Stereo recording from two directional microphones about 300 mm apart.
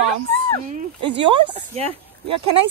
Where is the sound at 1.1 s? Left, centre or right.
Centre.